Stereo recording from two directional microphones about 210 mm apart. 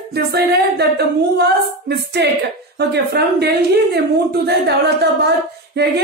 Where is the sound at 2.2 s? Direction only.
50° right (ahead or behind).